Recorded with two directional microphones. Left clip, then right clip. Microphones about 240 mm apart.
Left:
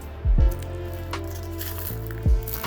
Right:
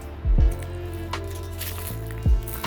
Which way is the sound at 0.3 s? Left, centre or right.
Centre.